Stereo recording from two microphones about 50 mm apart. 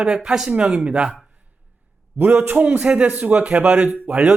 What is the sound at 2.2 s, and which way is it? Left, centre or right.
A man's voice, right.